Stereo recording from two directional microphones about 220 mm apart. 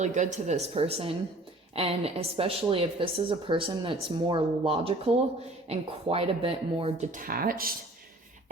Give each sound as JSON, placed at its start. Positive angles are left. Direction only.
{"t": 0.0, "sound": "a woman's voice", "side_deg": -35}